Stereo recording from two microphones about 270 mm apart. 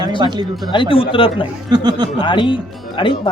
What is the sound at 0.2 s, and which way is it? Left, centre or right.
Speech, centre.